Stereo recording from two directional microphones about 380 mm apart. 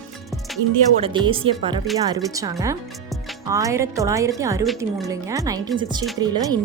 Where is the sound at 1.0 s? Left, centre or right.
Centre.